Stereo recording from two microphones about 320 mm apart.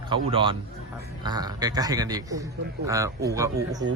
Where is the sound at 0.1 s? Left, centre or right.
Centre.